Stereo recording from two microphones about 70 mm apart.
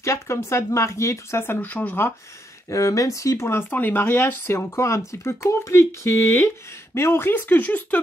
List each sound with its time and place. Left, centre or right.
0.0 s speech: left
2.7 s speech: left